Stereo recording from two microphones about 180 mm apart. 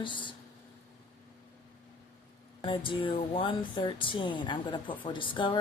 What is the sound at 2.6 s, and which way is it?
Speech, 25° left (ahead or behind).